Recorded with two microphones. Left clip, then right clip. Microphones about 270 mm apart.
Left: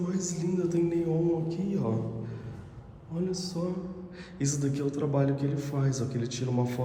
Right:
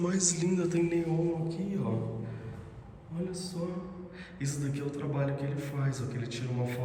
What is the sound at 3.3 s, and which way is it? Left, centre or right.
A man's voice, centre.